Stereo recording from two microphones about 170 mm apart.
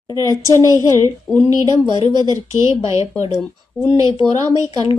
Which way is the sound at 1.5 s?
25° right (ahead or behind).